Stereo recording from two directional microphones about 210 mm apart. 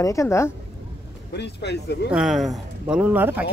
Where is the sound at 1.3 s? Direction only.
55° left (ahead or behind).